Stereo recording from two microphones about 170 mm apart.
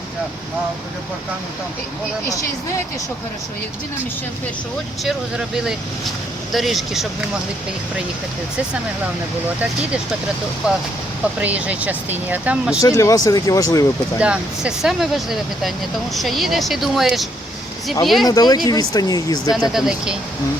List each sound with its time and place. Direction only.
5.0 s speech: 5° right (ahead or behind)
11.3 s speech: 10° right (ahead or behind)
12.8 s speech: 20° left (ahead or behind)
14.2 s speech: 5° right (ahead or behind)
18.3 s speech: 25° left (ahead or behind)
19.7 s speech: 5° right (ahead or behind)